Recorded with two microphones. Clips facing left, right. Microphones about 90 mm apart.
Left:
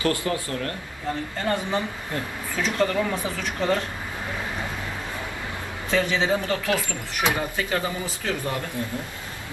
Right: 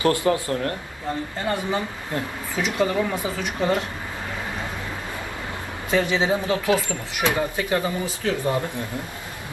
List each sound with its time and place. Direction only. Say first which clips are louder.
0.0 s speech: right 5 dB; 25° right (ahead or behind)
2.1 s speech: right 3 dB; 15° right (ahead or behind)
5.9 s speech: right 2 dB; 15° right (ahead or behind)